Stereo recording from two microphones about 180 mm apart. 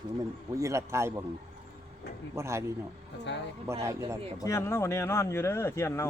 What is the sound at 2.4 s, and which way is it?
Speech, 15° right (ahead or behind).